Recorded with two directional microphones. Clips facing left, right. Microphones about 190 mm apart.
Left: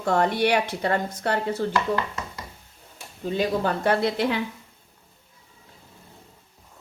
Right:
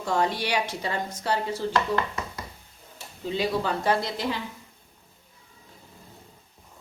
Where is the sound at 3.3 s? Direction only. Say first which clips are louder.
Left 3 dB; 50° left (ahead or behind).